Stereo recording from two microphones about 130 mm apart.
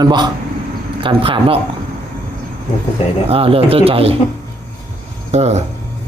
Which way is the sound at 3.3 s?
45° right (ahead or behind).